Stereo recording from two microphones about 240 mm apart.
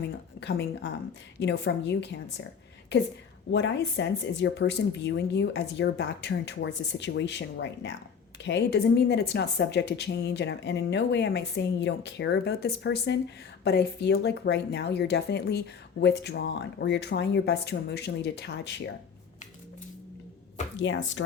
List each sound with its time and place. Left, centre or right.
0.3 s a woman's voice: left
3.5 s a woman's voice: left
20.7 s a woman's voice: left